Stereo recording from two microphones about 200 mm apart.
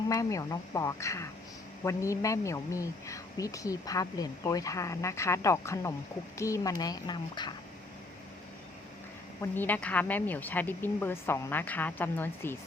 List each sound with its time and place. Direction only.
0.1 s speech: 15° left (ahead or behind)
9.4 s speech: 10° left (ahead or behind)